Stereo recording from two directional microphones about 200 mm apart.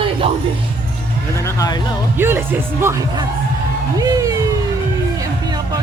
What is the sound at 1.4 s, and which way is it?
Speech, 15° left (ahead or behind).